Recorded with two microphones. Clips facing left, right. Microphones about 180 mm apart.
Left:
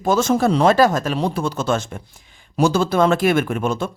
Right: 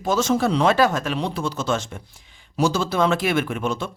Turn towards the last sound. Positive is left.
turn(degrees=50)  # may be behind; listen again after turning